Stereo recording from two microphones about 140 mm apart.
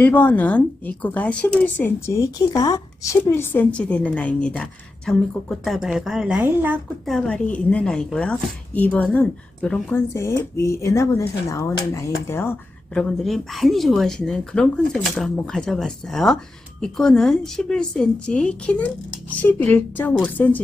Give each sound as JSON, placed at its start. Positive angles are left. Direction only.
{"t": 0.0, "sound": "a woman's voice", "side_deg": 10}
{"t": 2.3, "sound": "a woman's voice", "side_deg": 25}
{"t": 7.1, "sound": "a woman's voice", "side_deg": 5}
{"t": 10.0, "sound": "speech", "side_deg": 20}
{"t": 12.9, "sound": "a woman's voice", "side_deg": 0}